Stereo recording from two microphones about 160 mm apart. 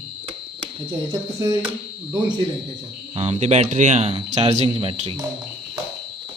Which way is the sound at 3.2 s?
45° right (ahead or behind).